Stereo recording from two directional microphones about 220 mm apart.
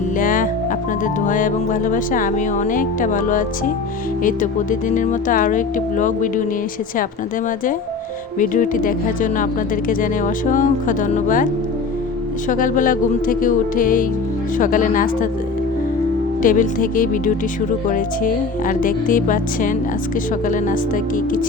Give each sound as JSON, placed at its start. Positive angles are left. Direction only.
{"t": 0.2, "sound": "music", "side_deg": 40}
{"t": 1.0, "sound": "speech", "side_deg": 35}
{"t": 8.4, "sound": "speech", "side_deg": 35}
{"t": 12.5, "sound": "speech", "side_deg": 35}
{"t": 16.4, "sound": "speech", "side_deg": 40}